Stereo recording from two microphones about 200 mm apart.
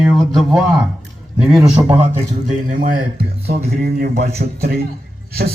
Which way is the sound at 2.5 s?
40° right (ahead or behind).